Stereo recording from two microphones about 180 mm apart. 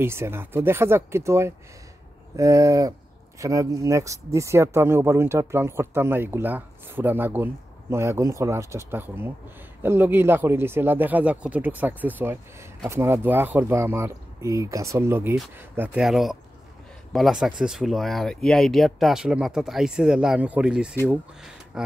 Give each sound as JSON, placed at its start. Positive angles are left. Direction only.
{"t": 0.0, "sound": "speech", "side_deg": -15}